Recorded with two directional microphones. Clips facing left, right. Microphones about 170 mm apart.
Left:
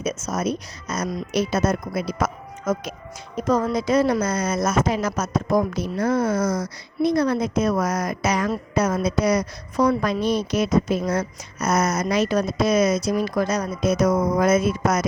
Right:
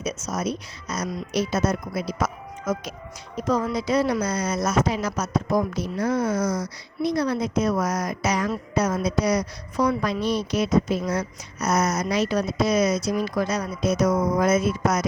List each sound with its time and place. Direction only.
0.0 s a woman's voice: 50° left (ahead or behind)